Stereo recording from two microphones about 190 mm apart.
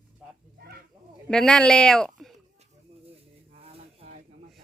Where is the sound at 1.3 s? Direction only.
5° left (ahead or behind).